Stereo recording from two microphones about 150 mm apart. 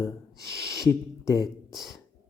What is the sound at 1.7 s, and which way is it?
Speech, centre (ahead or behind).